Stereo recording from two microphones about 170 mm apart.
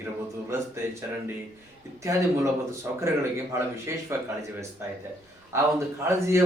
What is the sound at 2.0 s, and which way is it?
Speech, 15° right (ahead or behind).